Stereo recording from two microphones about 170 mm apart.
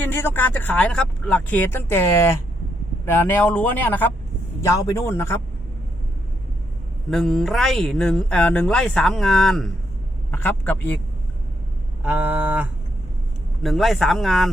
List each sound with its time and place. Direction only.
0.0 s speech: 10° left (ahead or behind)
7.1 s speech: centre (ahead or behind)
12.0 s a sound: 10° right (ahead or behind)
13.6 s speech: centre (ahead or behind)